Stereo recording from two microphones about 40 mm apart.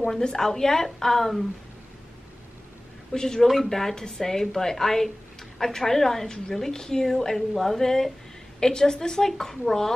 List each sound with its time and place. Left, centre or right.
0.0 s a woman's voice: centre
3.1 s a woman's voice: centre